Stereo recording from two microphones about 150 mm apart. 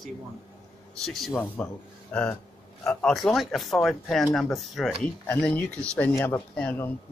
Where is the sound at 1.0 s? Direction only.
Centre (ahead or behind).